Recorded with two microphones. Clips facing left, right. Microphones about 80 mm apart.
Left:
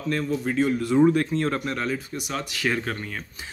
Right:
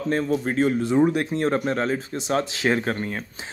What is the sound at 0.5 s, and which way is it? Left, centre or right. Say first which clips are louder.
Speech: even; right.